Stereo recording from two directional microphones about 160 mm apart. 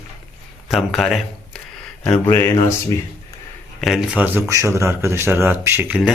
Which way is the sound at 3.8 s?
Centre (ahead or behind).